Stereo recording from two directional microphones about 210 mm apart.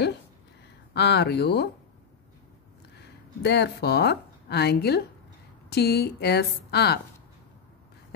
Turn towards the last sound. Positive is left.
turn(degrees=50)  # may be behind; listen again after turning